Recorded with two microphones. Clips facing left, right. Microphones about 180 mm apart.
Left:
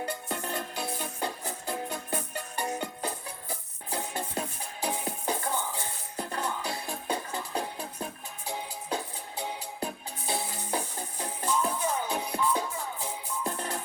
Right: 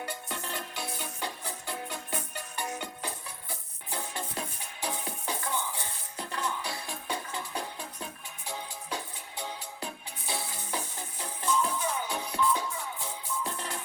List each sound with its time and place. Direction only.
0.0 s music: 35° left (ahead or behind)
9.8 s music: 35° left (ahead or behind)